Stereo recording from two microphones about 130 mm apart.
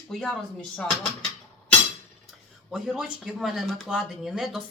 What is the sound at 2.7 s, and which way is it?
Speech, 5° right (ahead or behind).